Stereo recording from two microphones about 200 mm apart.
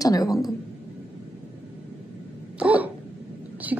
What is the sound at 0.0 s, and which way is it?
Speech, 20° left (ahead or behind).